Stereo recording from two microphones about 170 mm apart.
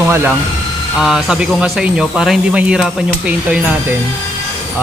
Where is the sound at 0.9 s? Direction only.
5° right (ahead or behind).